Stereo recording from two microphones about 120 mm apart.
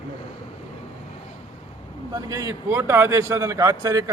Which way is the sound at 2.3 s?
30° right (ahead or behind).